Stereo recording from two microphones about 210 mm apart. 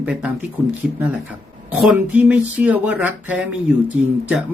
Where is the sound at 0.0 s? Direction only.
5° right (ahead or behind).